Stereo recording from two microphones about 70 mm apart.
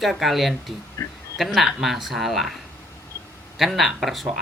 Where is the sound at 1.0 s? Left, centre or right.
Left.